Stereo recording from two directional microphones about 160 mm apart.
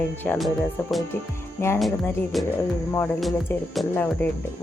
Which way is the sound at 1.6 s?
15° left (ahead or behind).